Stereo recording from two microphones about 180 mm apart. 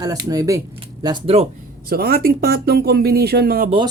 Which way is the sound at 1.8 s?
55° right (ahead or behind).